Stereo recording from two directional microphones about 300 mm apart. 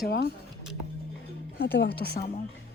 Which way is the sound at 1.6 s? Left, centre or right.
Left.